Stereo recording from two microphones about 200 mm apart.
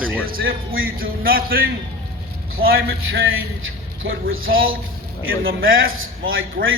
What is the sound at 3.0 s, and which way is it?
A man's voice, 80° right.